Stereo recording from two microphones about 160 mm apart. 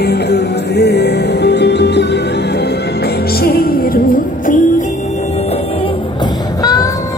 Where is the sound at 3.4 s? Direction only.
70° left (ahead or behind).